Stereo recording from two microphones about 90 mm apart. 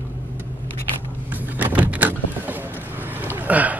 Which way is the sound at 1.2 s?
20° right (ahead or behind).